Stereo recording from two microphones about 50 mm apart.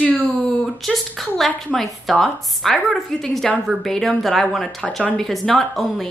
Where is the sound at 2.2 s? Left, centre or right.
Centre.